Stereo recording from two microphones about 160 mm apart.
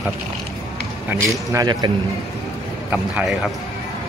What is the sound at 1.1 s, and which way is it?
Speech, 20° right (ahead or behind).